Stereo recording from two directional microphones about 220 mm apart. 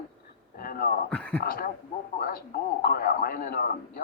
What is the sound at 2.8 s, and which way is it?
Speech, 45° left (ahead or behind).